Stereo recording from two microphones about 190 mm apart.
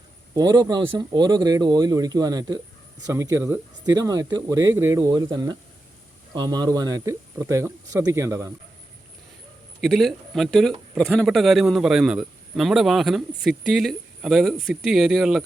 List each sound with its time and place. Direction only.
0.3 s speech: 20° right (ahead or behind)
9.8 s speech: centre (ahead or behind)